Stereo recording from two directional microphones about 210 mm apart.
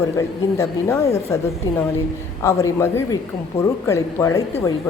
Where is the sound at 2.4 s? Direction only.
15° left (ahead or behind).